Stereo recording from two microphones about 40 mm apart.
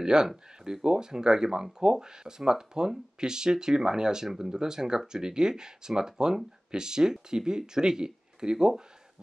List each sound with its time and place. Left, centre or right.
0.0 s speech: centre